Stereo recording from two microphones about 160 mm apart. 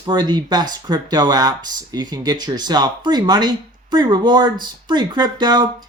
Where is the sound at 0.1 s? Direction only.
25° right (ahead or behind).